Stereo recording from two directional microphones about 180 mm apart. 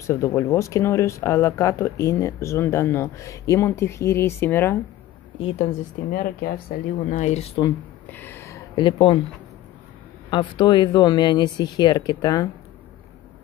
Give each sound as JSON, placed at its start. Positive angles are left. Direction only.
{"t": 0.0, "sound": "speech", "side_deg": 15}
{"t": 5.4, "sound": "speech", "side_deg": 35}
{"t": 6.1, "sound": "speech", "side_deg": 55}
{"t": 7.1, "sound": "speech", "side_deg": 40}
{"t": 8.1, "sound": "a sound", "side_deg": 10}
{"t": 10.3, "sound": "speech", "side_deg": 25}